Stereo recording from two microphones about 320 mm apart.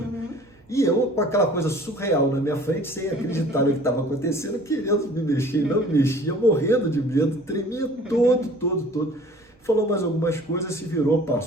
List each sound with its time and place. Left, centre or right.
0.7 s a man's voice: centre
9.6 s a man's voice: centre